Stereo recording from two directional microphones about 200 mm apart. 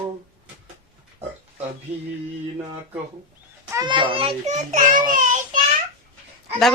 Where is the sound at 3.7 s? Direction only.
20° right (ahead or behind); by 5.6 s 40° right (ahead or behind).